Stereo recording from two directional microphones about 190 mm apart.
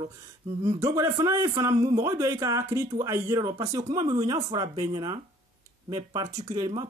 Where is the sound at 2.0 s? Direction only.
15° right (ahead or behind).